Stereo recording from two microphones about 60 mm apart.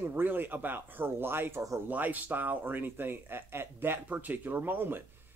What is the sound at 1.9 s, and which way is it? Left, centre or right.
Speech, right.